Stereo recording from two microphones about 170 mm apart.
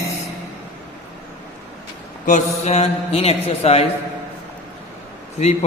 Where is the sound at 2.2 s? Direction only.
40° left (ahead or behind).